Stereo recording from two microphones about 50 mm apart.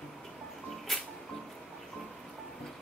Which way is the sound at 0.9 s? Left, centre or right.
Centre.